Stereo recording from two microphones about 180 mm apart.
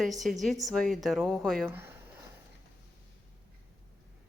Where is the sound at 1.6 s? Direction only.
15° right (ahead or behind).